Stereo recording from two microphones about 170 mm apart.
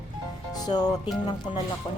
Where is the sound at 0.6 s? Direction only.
25° left (ahead or behind).